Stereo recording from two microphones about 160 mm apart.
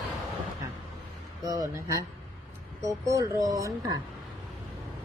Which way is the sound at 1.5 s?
20° right (ahead or behind).